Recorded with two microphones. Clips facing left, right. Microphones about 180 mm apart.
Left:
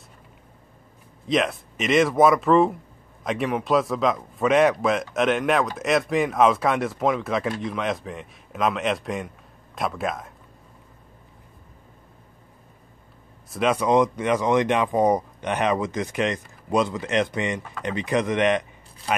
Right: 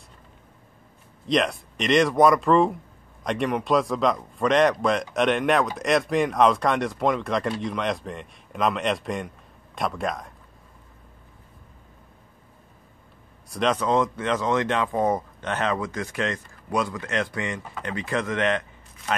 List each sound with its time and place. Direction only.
1.2 s a man's voice: centre (ahead or behind)
13.5 s speech: 5° left (ahead or behind)